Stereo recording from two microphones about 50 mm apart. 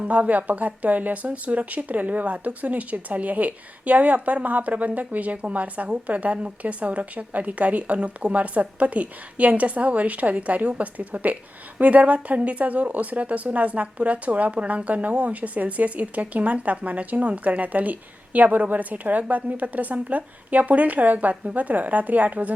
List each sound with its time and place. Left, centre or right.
0.0 s speech: right